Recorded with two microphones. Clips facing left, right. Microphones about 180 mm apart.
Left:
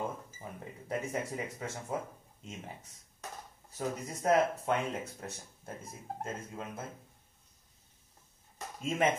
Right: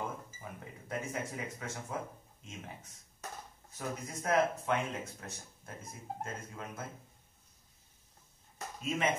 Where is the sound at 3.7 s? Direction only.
30° left (ahead or behind).